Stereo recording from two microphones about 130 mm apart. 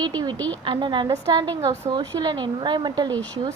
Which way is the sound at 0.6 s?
35° right (ahead or behind).